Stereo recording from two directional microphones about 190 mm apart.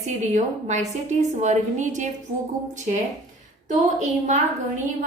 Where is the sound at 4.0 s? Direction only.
40° right (ahead or behind).